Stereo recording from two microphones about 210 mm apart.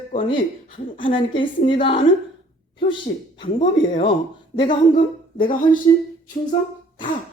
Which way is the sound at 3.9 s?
25° left (ahead or behind).